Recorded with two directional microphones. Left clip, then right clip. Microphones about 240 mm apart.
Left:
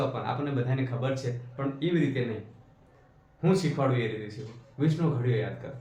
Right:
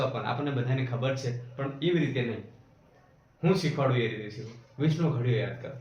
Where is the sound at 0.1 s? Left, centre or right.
Centre.